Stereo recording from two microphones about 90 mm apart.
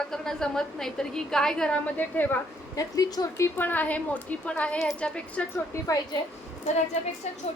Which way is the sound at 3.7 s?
20° left (ahead or behind).